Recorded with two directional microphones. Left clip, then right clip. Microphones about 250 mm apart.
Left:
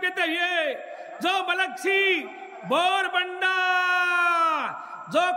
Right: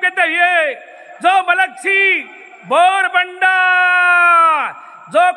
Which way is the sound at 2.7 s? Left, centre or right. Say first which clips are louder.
Right 11 dB; centre.